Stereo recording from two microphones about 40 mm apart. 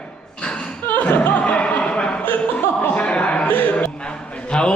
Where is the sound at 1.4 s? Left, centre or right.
Left.